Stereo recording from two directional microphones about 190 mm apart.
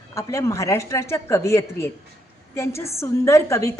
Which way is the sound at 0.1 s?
15° left (ahead or behind).